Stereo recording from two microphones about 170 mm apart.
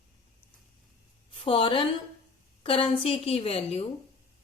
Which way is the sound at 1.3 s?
30° left (ahead or behind).